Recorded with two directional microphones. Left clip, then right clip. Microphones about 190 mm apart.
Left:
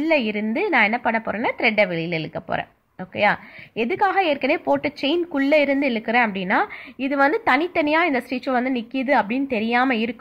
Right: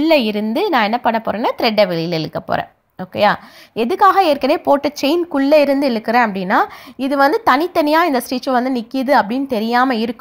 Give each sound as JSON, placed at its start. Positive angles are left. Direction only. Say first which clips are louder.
{"t": 0.0, "sound": "a woman's voice", "louder": "right 6 dB", "side_deg": -35}